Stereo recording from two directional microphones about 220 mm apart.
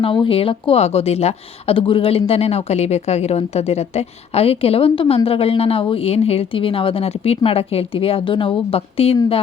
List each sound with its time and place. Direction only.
0.0 s speech: 25° left (ahead or behind)